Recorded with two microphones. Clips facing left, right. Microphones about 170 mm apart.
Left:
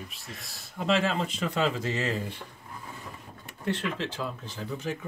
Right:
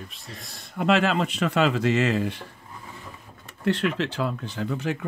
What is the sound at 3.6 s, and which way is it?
Speech, 75° right (ahead or behind).